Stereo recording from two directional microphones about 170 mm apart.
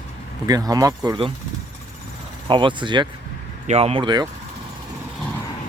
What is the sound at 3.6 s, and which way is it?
Speech, 40° right (ahead or behind).